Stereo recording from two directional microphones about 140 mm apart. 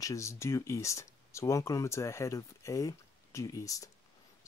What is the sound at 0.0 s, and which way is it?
Speech, 20° left (ahead or behind).